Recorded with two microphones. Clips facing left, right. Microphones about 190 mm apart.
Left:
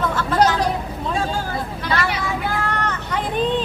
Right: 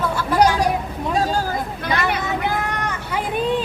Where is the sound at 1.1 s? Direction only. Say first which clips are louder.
Right 4 dB; 40° right (ahead or behind).